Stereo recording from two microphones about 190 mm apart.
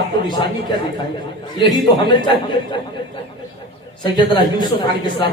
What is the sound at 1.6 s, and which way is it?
A man's voice, 25° left (ahead or behind).